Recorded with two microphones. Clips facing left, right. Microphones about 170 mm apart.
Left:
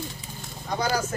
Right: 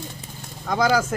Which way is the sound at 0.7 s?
90° right.